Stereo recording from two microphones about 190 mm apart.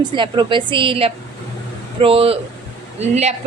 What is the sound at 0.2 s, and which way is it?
A woman's voice, 25° right (ahead or behind).